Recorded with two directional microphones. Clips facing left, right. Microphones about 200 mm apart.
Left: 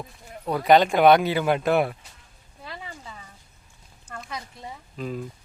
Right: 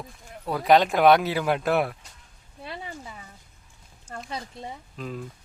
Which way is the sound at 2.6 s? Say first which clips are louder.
Right 2 dB; 20° right (ahead or behind).